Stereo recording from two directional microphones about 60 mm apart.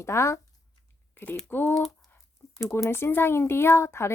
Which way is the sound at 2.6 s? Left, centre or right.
Left.